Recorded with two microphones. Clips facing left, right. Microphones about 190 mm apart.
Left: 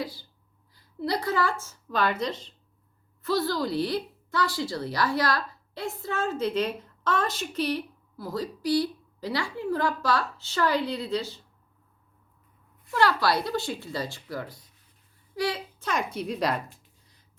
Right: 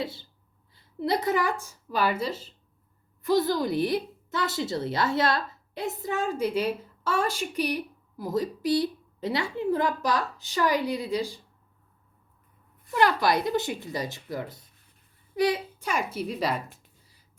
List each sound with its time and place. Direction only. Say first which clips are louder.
0.0 s a woman's voice: right 1 dB; 25° right (ahead or behind); by 2.6 s 5° right (ahead or behind)
3.2 s a woman's voice: right 3 dB; 20° right (ahead or behind)
12.9 s a woman's voice: right 1 dB; 20° right (ahead or behind); by 16.6 s centre (ahead or behind)